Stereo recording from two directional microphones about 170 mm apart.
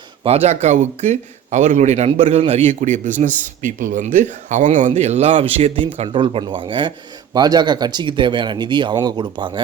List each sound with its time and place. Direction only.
0.2 s a man's voice: 35° right (ahead or behind)